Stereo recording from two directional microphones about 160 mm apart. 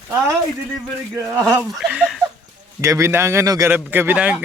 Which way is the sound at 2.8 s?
20° right (ahead or behind).